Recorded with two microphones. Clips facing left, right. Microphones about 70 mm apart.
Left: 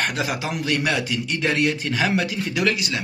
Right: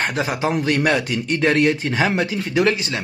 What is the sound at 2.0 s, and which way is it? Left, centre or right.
Speech, right.